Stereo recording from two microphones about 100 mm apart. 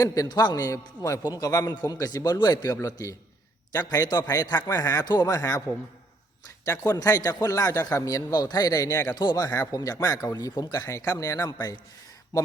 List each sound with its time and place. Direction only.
0.0 s a man's voice: 35° left (ahead or behind)
6.7 s a man's voice: 35° left (ahead or behind)